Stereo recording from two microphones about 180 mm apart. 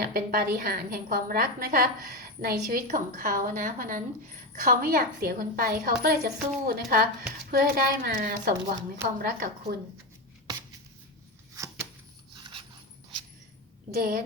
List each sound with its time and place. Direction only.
0.0 s a woman's voice: 55° right (ahead or behind)
4.6 s a woman's voice: 60° right (ahead or behind)
11.5 s a sound: 15° right (ahead or behind)
13.9 s a woman's voice: 55° right (ahead or behind)